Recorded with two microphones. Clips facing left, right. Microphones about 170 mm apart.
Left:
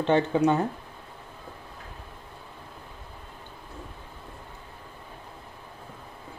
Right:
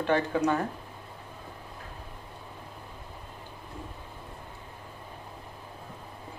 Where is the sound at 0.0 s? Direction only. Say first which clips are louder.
Left 4 dB; 25° left (ahead or behind).